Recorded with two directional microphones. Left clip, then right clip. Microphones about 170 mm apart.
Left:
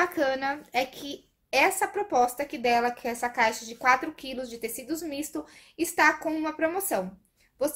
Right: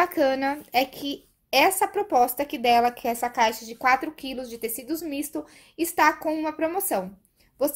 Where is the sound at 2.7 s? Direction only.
55° right (ahead or behind); by 7.0 s 30° right (ahead or behind).